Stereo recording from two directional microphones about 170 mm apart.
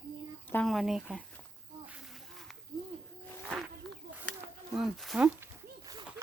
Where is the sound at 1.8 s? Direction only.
5° right (ahead or behind).